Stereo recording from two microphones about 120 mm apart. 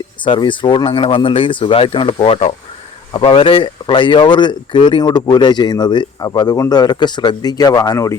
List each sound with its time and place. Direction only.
0.3 s speech: 40° left (ahead or behind)